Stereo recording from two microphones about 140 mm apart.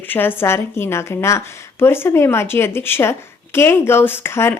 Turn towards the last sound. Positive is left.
turn(degrees=15)  # may be behind; listen again after turning